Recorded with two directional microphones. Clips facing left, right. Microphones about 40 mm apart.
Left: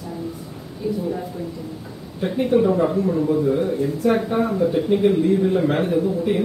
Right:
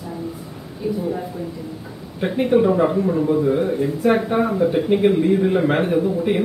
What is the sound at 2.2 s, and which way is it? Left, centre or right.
Speech, right.